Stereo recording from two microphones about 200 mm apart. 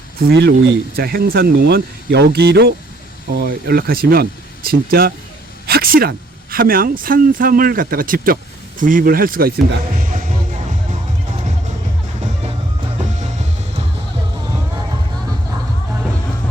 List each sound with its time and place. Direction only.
0.2 s speech: 55° right (ahead or behind)